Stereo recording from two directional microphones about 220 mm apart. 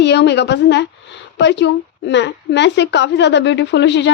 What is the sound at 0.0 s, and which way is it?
Speech, 50° left (ahead or behind).